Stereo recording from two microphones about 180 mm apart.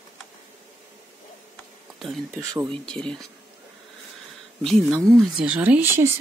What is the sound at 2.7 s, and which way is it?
Speech, 5° left (ahead or behind).